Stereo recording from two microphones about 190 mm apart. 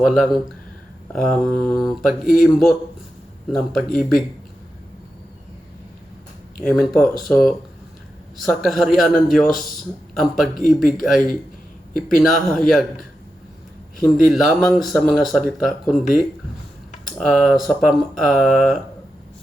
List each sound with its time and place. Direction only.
0.0 s speech: centre (ahead or behind)
6.7 s speech: centre (ahead or behind)
17.2 s speech: centre (ahead or behind)